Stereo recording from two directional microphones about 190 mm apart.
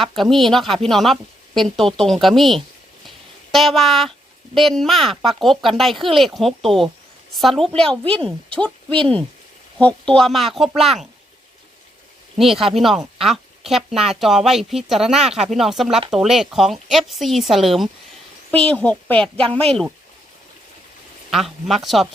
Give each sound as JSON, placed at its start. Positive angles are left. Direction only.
{"t": 0.0, "sound": "a woman's voice", "side_deg": 0}
{"t": 8.9, "sound": "speech", "side_deg": -25}
{"t": 9.7, "sound": "a woman's voice", "side_deg": 5}
{"t": 12.4, "sound": "a woman's voice", "side_deg": 0}
{"t": 21.2, "sound": "a woman's voice", "side_deg": 0}